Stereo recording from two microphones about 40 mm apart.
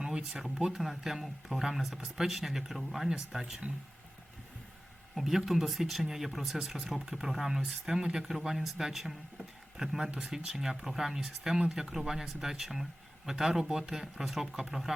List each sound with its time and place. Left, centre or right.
0.0 s speech: centre
0.8 s speech: centre
5.1 s speech: centre
6.6 s speech: centre